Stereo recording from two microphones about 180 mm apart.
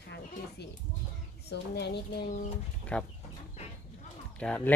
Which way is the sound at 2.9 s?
10° left (ahead or behind).